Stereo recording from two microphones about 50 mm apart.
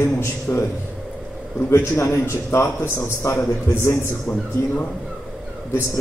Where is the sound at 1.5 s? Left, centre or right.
Left.